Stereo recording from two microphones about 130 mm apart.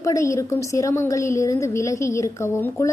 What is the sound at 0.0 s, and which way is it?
A woman's voice, 25° left (ahead or behind).